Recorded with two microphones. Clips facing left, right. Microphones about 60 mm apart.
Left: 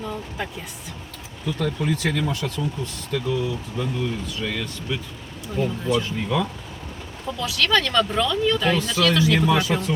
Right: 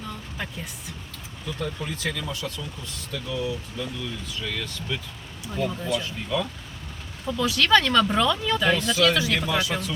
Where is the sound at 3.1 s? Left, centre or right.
Left.